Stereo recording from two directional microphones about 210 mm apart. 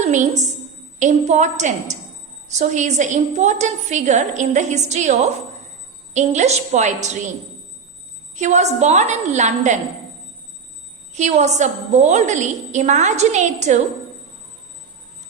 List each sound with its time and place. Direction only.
0.0 s a woman's voice: 35° right (ahead or behind)
8.4 s a woman's voice: 35° right (ahead or behind)
11.1 s a woman's voice: 35° right (ahead or behind)